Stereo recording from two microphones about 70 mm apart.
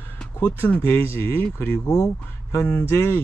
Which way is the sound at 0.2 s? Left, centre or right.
Centre.